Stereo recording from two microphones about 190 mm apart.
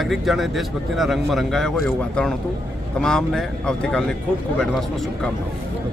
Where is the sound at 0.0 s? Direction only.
Centre (ahead or behind).